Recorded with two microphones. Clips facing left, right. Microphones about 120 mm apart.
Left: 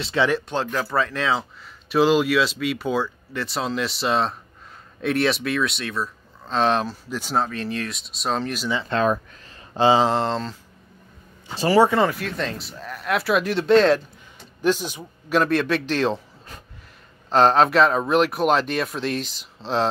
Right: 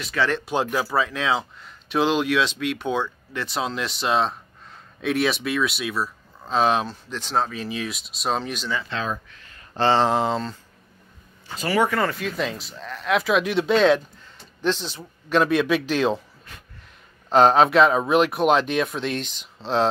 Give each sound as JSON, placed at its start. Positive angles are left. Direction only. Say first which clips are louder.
{"t": 0.0, "sound": "speech", "louder": "left 3 dB", "side_deg": 25}
{"t": 0.5, "sound": "speech", "louder": "right 1 dB", "side_deg": -10}
{"t": 8.8, "sound": "speech", "louder": "left 7 dB", "side_deg": 55}
{"t": 9.3, "sound": "a sound", "louder": "left 3 dB", "side_deg": 35}
{"t": 9.8, "sound": "speech", "louder": "left 2 dB", "side_deg": 10}
{"t": 10.0, "sound": "speech", "louder": "even", "side_deg": 0}
{"t": 11.5, "sound": "speech", "louder": "left 5 dB", "side_deg": 30}
{"t": 12.1, "sound": "speech", "louder": "right 1 dB", "side_deg": 0}
{"t": 14.6, "sound": "speech", "louder": "left 3 dB", "side_deg": 10}
{"t": 17.3, "sound": "speech", "louder": "right 1 dB", "side_deg": 0}